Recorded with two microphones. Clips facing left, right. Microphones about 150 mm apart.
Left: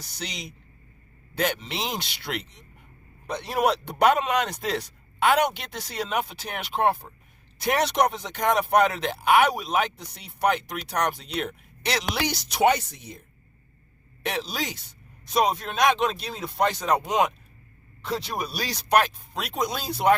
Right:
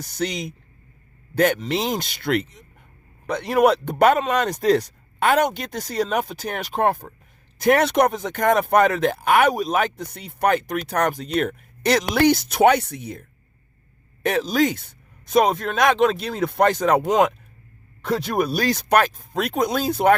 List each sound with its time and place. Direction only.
0.0 s speech: 50° right (ahead or behind)
7.6 s speech: 55° right (ahead or behind)